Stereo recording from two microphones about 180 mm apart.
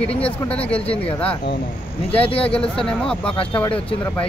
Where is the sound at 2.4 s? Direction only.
5° left (ahead or behind).